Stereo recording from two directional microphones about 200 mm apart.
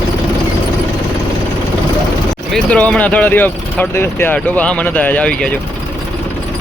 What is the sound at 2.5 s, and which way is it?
Speech, 5° left (ahead or behind).